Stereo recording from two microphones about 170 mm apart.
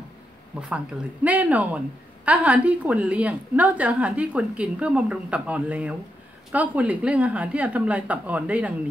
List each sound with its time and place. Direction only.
0.6 s a woman's voice: 5° right (ahead or behind)